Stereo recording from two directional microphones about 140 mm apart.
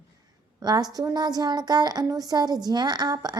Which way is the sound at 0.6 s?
30° right (ahead or behind).